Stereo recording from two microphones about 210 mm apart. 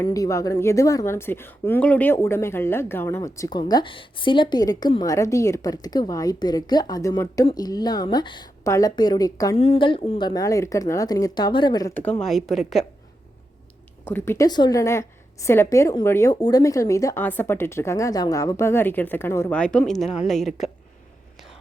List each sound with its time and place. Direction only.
0.0 s speech: 15° left (ahead or behind)
12.2 s a woman's voice: centre (ahead or behind)
14.0 s a woman's voice: 10° left (ahead or behind)